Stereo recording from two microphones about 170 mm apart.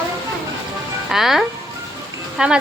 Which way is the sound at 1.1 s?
Centre (ahead or behind).